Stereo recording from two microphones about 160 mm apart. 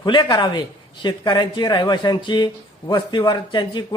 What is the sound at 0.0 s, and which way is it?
Speech, 30° left (ahead or behind).